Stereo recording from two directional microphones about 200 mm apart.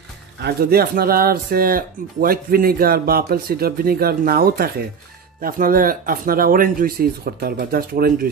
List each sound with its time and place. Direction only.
0.4 s speech: 55° right (ahead or behind)